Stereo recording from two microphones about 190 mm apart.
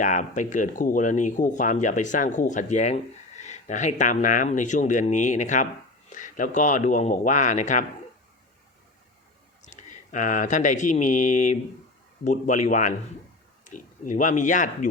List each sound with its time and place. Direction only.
0.0 s speech: 40° left (ahead or behind)
9.6 s speech: 40° left (ahead or behind)